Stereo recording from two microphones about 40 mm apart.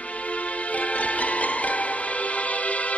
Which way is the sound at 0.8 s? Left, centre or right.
Left.